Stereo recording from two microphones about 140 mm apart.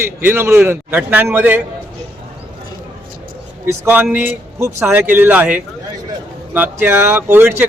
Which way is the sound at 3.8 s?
10° right (ahead or behind).